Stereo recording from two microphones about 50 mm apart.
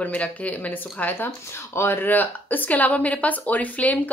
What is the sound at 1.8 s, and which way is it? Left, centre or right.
A woman's voice, left.